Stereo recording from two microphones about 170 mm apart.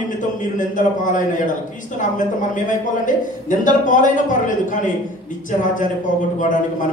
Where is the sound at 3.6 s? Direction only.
50° left (ahead or behind).